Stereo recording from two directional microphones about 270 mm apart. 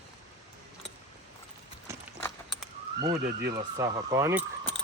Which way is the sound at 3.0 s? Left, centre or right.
Centre.